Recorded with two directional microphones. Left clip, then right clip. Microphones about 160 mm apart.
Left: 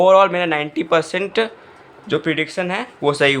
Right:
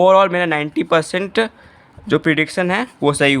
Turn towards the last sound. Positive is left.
turn(degrees=-40)  # may be behind; listen again after turning